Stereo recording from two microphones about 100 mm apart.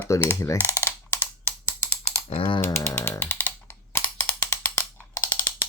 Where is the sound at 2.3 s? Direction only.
70° left (ahead or behind).